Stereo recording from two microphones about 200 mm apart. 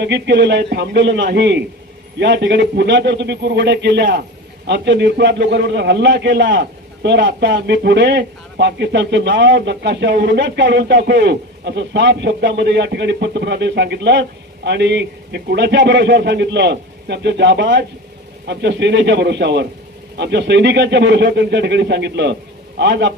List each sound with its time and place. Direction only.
0.0 s a man's voice: 60° right (ahead or behind)